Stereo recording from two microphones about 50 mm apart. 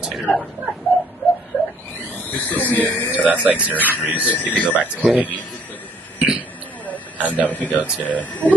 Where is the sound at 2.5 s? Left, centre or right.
Left.